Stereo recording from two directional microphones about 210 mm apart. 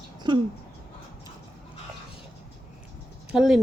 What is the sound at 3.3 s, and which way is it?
Speech, centre (ahead or behind).